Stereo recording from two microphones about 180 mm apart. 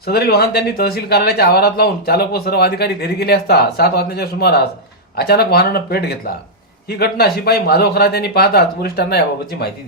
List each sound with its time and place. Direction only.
0.1 s speech: 60° left (ahead or behind)